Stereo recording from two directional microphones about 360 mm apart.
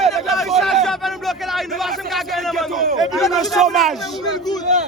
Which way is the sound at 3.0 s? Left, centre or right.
Centre.